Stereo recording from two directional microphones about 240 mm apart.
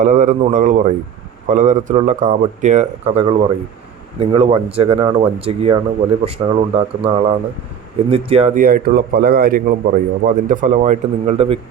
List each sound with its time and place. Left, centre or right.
0.0 s a man's voice: right